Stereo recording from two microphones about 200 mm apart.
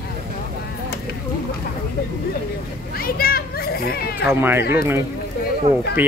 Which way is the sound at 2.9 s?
50° left (ahead or behind).